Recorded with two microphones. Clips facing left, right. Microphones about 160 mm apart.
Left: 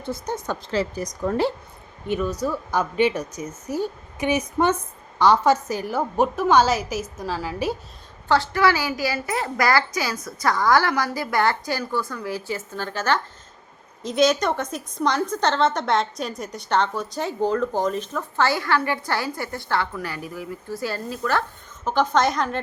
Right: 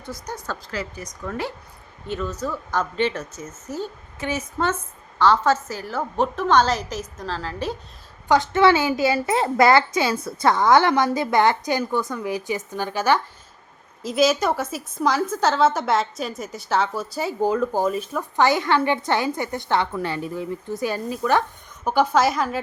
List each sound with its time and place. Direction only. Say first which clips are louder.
0.0 s a woman's voice: left 5 dB; 25° left (ahead or behind)
2.0 s speech: left 3 dB; 15° left (ahead or behind)
8.3 s a woman's voice: right 3 dB; 20° right (ahead or behind); by 22.6 s 5° right (ahead or behind)